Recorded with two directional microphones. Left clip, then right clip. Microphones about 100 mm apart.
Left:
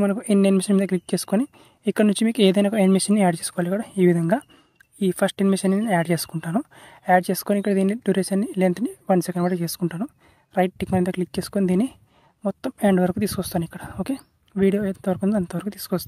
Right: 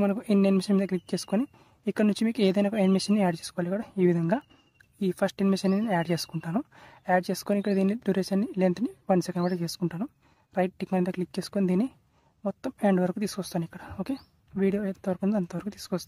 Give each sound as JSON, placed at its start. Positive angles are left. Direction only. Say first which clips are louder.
{"t": 0.0, "sound": "speech", "louder": "left 5 dB", "side_deg": 30}